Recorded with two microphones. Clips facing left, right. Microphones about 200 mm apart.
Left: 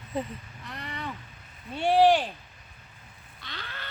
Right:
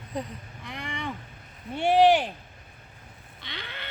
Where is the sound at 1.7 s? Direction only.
15° right (ahead or behind).